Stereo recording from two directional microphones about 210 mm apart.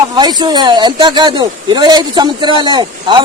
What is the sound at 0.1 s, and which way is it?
Speech, 20° right (ahead or behind).